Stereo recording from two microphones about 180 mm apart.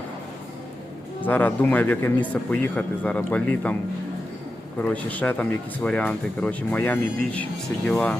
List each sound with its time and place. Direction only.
1.2 s speech: 10° left (ahead or behind)
4.8 s speech: 10° left (ahead or behind)